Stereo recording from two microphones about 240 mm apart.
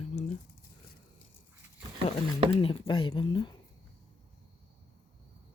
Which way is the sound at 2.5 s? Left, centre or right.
Left.